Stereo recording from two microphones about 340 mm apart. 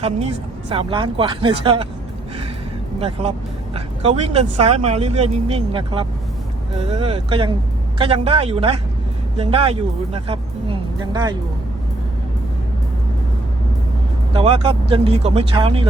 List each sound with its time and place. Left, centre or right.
0.7 s speech: centre
3.8 s speech: centre
14.3 s speech: centre